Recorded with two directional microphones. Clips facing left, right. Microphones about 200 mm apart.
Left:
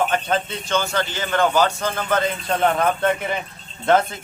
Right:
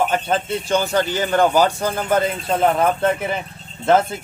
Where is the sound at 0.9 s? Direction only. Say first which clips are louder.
Right 5 dB; 15° right (ahead or behind).